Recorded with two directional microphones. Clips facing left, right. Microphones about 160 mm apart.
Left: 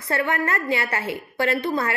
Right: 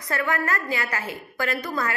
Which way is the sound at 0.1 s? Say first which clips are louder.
Left 2 dB; 25° left (ahead or behind).